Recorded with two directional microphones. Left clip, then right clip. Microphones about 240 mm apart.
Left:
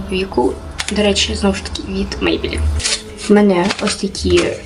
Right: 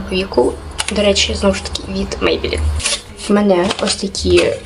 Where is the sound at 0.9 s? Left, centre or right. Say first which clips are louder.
Right 2 dB; centre.